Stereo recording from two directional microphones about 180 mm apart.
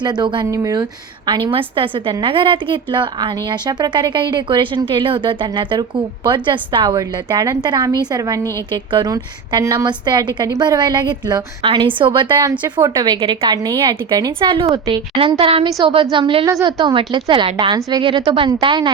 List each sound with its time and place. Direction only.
0.0 s a woman's voice: 25° right (ahead or behind)